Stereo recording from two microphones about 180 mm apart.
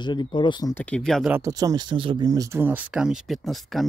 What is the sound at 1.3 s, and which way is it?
Speech, 20° right (ahead or behind).